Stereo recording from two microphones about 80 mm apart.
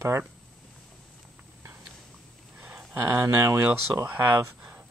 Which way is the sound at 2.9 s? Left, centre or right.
Right.